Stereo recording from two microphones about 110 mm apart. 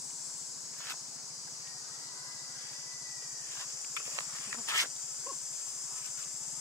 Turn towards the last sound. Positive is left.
turn(degrees=25)  # may be behind; listen again after turning